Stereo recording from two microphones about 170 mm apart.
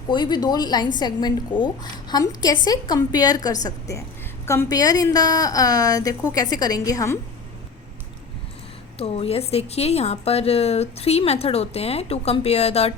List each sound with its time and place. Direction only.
0.1 s a woman's voice: 25° left (ahead or behind)
9.0 s a woman's voice: 35° left (ahead or behind)